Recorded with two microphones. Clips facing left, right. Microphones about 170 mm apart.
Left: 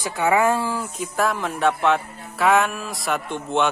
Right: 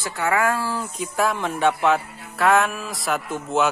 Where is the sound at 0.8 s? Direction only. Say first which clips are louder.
Even; centre (ahead or behind).